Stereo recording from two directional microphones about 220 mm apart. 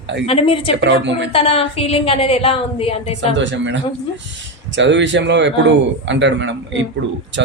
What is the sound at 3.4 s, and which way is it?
Speech, 55° right (ahead or behind).